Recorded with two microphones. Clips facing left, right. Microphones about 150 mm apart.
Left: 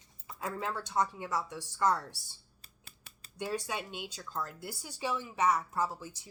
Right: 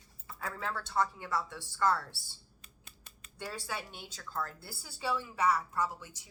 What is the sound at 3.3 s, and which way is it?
A woman's voice, 15° left (ahead or behind).